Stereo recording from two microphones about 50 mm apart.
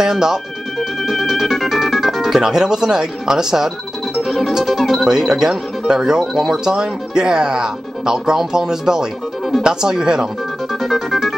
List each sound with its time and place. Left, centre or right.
0.0 s speech: centre
5.0 s speech: centre
10.7 s music: centre